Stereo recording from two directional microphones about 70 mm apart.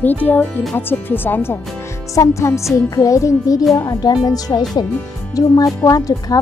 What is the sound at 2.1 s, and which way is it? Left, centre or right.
Music, left.